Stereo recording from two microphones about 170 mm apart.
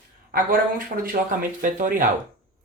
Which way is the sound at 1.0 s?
50° right (ahead or behind).